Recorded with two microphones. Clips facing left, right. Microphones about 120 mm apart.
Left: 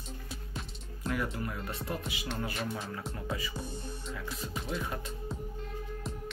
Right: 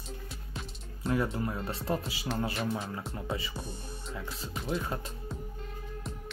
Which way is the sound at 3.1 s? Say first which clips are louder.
Right 1 dB; 25° right (ahead or behind).